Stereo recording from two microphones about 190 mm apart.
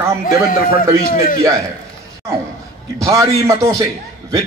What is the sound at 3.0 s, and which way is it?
Speech, 15° right (ahead or behind).